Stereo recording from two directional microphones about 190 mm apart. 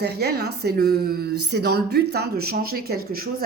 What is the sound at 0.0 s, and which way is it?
A woman's voice, 60° right (ahead or behind).